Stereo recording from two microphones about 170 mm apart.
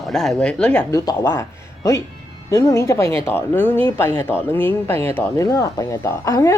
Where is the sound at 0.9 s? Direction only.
20° left (ahead or behind).